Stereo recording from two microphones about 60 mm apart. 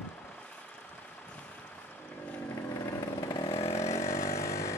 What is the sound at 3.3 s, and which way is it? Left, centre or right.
Chainsaw, left.